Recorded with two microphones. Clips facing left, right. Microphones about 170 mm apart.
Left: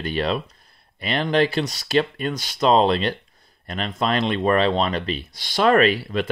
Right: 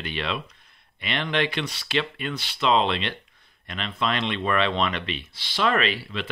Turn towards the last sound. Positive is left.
turn(degrees=45)  # may be behind; listen again after turning